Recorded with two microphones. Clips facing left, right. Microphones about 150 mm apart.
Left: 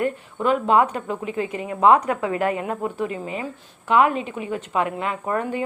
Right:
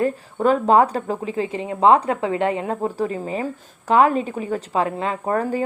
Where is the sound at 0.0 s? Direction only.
35° right (ahead or behind).